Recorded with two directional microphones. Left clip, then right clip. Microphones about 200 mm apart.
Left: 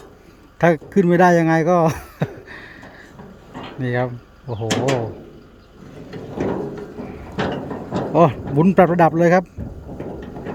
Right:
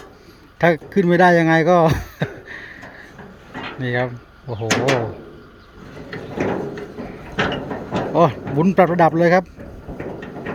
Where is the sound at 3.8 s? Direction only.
15° left (ahead or behind).